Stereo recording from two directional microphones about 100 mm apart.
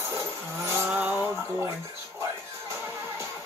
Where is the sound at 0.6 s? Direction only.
25° right (ahead or behind).